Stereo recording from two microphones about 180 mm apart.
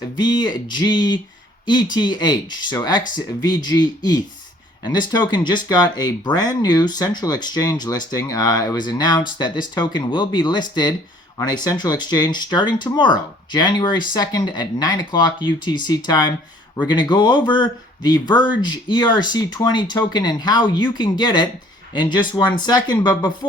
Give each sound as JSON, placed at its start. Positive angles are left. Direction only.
{"t": 0.2, "sound": "speech", "side_deg": 25}